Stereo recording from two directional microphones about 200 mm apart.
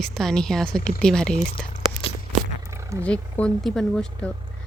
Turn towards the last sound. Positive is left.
turn(degrees=0)  # may be behind; listen again after turning